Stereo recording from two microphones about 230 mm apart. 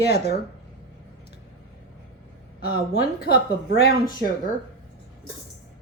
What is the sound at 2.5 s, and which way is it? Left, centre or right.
A woman's voice, left.